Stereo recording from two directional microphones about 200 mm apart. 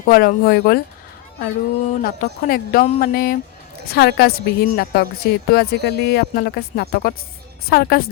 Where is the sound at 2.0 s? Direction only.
45° left (ahead or behind).